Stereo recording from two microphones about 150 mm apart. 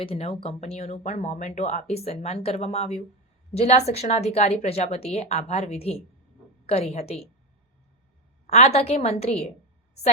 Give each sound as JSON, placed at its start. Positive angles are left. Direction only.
{"t": 0.0, "sound": "speech", "side_deg": 40}
{"t": 8.4, "sound": "speech", "side_deg": 45}